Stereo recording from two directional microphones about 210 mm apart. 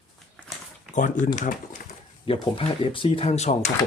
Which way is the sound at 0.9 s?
35° left (ahead or behind).